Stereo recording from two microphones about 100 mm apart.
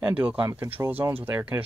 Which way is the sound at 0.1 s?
15° right (ahead or behind).